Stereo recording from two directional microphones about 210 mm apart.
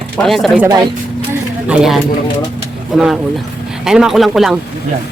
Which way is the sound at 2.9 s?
5° right (ahead or behind).